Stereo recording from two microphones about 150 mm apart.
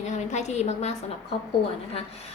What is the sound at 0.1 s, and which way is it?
A woman's voice, 50° left (ahead or behind).